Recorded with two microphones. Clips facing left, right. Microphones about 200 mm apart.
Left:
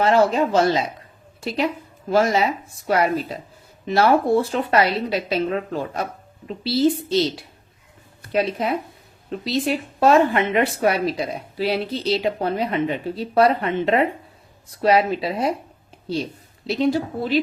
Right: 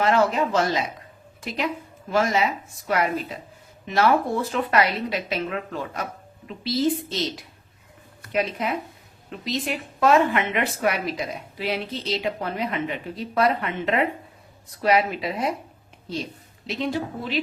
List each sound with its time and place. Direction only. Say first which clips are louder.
0.0 s a woman's voice: left 3 dB; 30° left (ahead or behind)
16.6 s a woman's voice: left 6 dB; 35° left (ahead or behind)